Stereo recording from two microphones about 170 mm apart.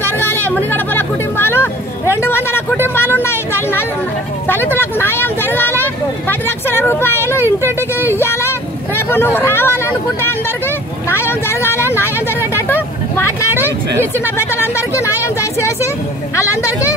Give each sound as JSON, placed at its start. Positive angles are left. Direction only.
{"t": 0.0, "sound": "chatter", "side_deg": 15}
{"t": 0.7, "sound": "a sound", "side_deg": 10}
{"t": 4.5, "sound": "vehicle", "side_deg": 10}
{"t": 11.1, "sound": "vehicle", "side_deg": 15}
{"t": 14.2, "sound": "a woman's voice", "side_deg": 15}